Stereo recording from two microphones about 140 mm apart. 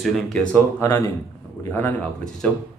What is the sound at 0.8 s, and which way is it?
A man's voice, 20° left (ahead or behind).